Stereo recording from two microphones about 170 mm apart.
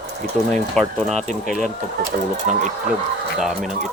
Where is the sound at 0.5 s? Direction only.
Centre (ahead or behind).